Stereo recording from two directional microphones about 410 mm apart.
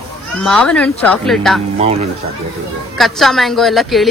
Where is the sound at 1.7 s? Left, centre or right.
Centre.